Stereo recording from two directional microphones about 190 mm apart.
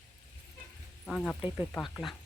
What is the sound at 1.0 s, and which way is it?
Speech, 5° left (ahead or behind).